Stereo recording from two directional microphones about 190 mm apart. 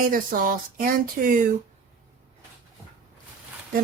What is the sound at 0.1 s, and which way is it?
Speech, 45° right (ahead or behind).